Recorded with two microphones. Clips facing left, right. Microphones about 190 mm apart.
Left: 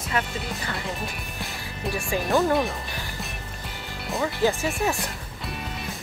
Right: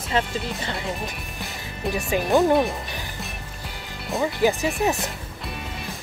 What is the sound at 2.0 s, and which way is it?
Speech, 20° right (ahead or behind).